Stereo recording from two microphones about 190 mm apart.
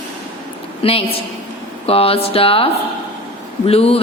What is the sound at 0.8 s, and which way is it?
Speech, 30° left (ahead or behind).